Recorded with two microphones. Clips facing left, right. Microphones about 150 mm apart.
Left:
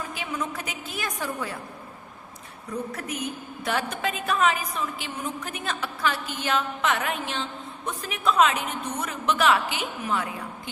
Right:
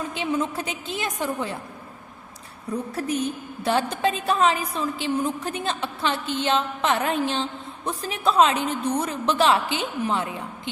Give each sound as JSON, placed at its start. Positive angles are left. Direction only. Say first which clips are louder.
{"t": 0.1, "sound": "a woman's voice", "louder": "right 6 dB", "side_deg": -25}
{"t": 2.9, "sound": "a woman's voice", "louder": "right 6 dB", "side_deg": -30}